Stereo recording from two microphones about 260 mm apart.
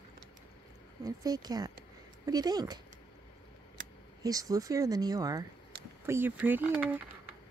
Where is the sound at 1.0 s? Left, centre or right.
Centre.